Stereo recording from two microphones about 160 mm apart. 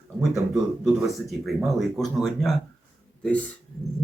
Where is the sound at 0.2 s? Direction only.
5° right (ahead or behind).